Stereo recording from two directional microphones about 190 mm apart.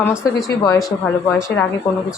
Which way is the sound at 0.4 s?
15° left (ahead or behind).